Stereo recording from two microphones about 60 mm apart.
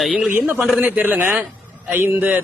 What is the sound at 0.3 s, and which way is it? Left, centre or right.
A man's voice, right.